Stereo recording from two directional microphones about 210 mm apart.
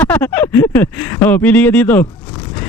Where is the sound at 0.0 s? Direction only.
5° left (ahead or behind).